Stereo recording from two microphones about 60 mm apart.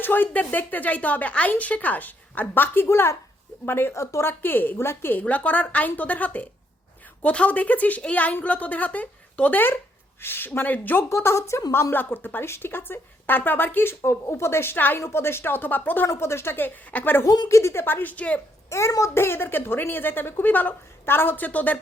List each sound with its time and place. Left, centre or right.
0.0 s speech: left
2.8 s a woman's voice: left
3.9 s speech: left
4.2 s a woman's voice: left
5.1 s a woman's voice: left
11.1 s speech: left
11.9 s a woman's voice: left
14.0 s a woman's voice: left
16.0 s a woman's voice: left
17.2 s speech: left
17.8 s speech: left
18.7 s speech: left
19.1 s a woman's voice: left